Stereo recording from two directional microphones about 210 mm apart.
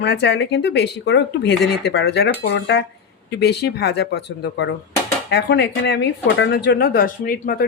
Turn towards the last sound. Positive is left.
turn(degrees=45)  # may be behind; listen again after turning